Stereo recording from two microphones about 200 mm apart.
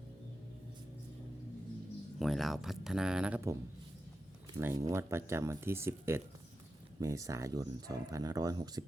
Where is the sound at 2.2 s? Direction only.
Centre (ahead or behind).